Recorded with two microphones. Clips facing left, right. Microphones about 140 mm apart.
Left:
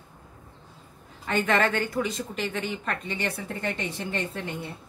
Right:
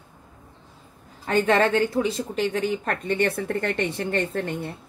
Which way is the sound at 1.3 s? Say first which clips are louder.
Right 4 dB; 35° right (ahead or behind).